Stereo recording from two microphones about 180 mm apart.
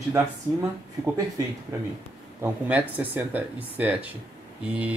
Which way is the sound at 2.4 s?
10° right (ahead or behind).